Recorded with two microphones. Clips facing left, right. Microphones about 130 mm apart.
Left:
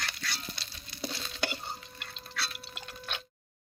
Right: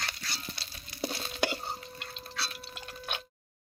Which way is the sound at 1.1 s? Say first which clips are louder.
Right 4 dB; 40° right (ahead or behind).